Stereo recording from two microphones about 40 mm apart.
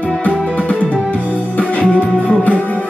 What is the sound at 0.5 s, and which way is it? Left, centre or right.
Music, left.